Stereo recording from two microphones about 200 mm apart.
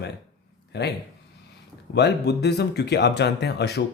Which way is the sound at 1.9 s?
55° left (ahead or behind).